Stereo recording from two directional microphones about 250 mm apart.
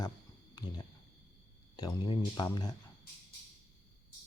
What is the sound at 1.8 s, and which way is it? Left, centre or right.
Speech, centre.